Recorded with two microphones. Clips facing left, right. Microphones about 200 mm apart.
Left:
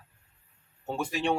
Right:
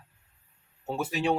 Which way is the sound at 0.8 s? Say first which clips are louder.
Right 1 dB; 5° right (ahead or behind).